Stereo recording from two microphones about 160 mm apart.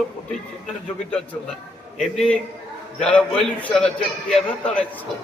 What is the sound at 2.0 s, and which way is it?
Speech, 5° left (ahead or behind).